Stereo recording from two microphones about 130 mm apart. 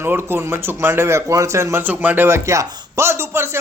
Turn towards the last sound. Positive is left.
turn(degrees=-20)  # may be behind; listen again after turning